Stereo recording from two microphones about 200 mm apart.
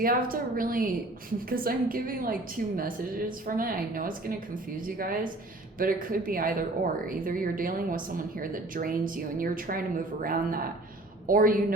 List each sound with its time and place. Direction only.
0.0 s speech: 45° right (ahead or behind)